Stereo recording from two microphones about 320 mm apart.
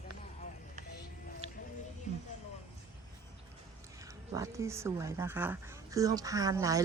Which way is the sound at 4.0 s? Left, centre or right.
Centre.